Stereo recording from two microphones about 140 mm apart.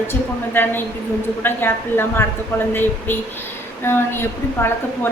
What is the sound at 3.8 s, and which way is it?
Speech, 15° left (ahead or behind).